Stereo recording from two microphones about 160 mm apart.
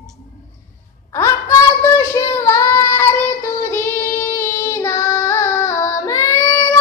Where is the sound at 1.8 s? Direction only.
15° left (ahead or behind).